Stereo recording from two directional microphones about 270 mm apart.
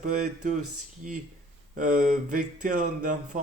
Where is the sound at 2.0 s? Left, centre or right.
Right.